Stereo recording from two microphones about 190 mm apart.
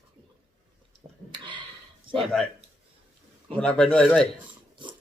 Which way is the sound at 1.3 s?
25° right (ahead or behind).